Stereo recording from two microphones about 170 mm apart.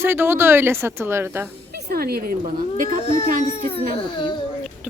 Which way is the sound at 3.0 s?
40° left (ahead or behind).